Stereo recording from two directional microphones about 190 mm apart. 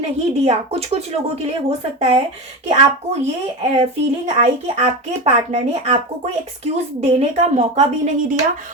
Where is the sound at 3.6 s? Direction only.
35° right (ahead or behind).